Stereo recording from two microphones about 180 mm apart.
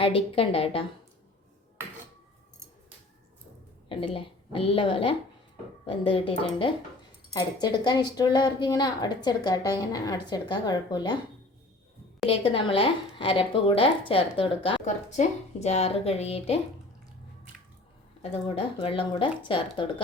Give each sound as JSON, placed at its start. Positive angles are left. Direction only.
{"t": 0.0, "sound": "a woman's voice", "side_deg": 30}
{"t": 3.8, "sound": "a woman's voice", "side_deg": 30}
{"t": 12.3, "sound": "a woman's voice", "side_deg": 30}
{"t": 18.2, "sound": "a woman's voice", "side_deg": 30}